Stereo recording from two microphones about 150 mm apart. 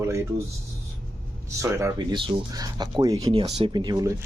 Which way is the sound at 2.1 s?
25° right (ahead or behind).